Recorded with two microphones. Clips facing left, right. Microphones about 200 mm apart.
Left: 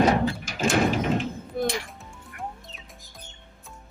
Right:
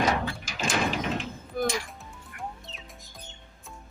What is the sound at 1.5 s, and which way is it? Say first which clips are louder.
Music: even; centre (ahead or behind).